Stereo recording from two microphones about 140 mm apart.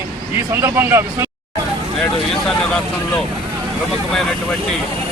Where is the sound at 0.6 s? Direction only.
20° right (ahead or behind).